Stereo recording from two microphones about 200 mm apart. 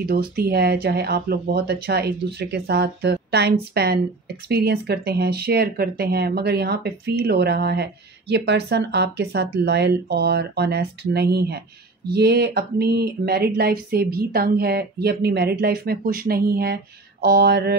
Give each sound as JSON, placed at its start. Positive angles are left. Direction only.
{"t": 0.0, "sound": "speech", "side_deg": -50}